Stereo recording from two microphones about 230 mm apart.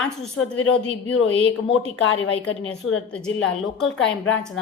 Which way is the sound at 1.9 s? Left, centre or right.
Left.